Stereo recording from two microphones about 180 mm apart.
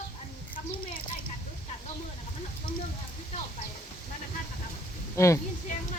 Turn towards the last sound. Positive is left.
turn(degrees=15)  # may be behind; listen again after turning